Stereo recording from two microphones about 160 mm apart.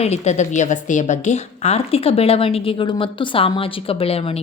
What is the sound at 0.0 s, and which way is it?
A woman's voice, 45° left (ahead or behind).